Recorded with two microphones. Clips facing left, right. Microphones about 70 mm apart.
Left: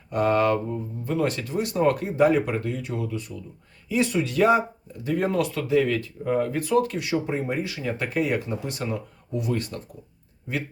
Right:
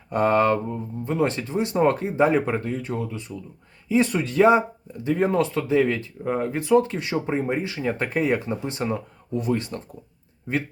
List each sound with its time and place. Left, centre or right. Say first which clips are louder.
0.1 s speech: right 2 dB; right